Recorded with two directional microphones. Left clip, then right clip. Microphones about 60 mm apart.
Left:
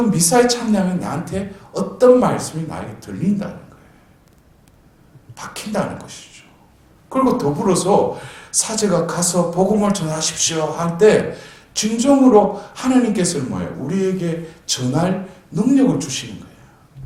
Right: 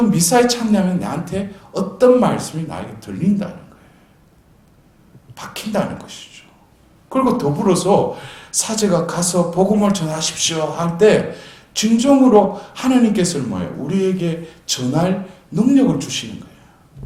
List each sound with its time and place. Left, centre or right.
0.0 s speech: right
5.4 s a man's voice: right